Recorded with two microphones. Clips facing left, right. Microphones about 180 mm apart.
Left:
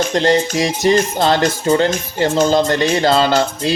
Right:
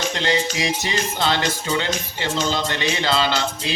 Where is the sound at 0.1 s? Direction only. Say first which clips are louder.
Left 8 dB; 45° left (ahead or behind).